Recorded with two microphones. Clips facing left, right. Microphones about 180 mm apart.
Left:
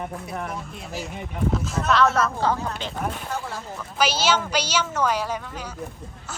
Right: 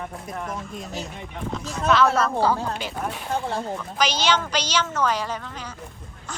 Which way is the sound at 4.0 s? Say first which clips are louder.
Left 1 dB; 5° left (ahead or behind).